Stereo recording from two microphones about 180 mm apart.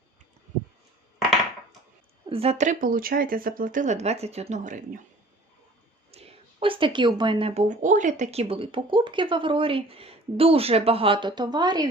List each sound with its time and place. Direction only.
2.3 s speech: 35° right (ahead or behind)
6.1 s speech: 35° right (ahead or behind)